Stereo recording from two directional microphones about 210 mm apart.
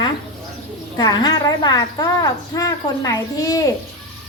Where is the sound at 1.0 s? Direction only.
20° left (ahead or behind).